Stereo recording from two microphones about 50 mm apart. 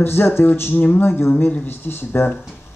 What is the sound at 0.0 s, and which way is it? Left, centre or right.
Speech, left.